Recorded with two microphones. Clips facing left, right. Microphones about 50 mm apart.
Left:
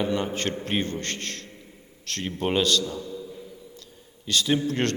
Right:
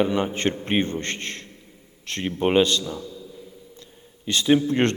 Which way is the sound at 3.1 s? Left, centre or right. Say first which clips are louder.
Left 3 dB; centre.